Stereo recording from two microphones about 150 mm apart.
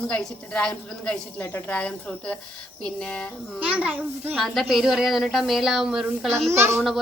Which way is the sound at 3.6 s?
10° right (ahead or behind).